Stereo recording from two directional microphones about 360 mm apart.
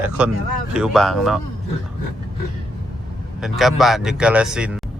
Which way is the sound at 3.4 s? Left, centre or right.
Centre.